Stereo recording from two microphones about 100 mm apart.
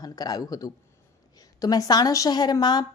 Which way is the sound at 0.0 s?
40° left (ahead or behind).